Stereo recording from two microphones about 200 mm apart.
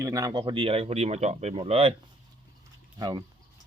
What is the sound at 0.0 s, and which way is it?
Speech, 15° right (ahead or behind).